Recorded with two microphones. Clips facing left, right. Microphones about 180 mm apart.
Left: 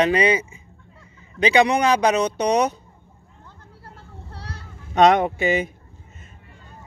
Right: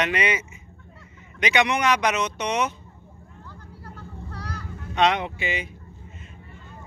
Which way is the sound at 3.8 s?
30° left (ahead or behind).